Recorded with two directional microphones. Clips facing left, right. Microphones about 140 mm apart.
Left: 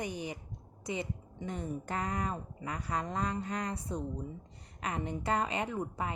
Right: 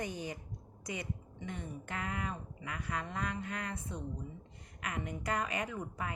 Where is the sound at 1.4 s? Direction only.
35° left (ahead or behind).